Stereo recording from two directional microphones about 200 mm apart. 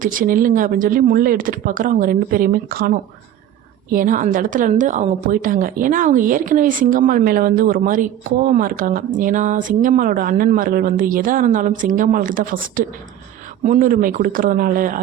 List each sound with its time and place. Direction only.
0.0 s a woman's voice: 45° right (ahead or behind)